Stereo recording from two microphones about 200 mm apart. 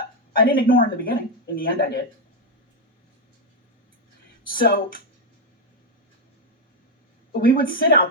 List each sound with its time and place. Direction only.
0.3 s speech: 45° left (ahead or behind)
4.4 s speech: 45° left (ahead or behind)
7.3 s speech: 45° left (ahead or behind)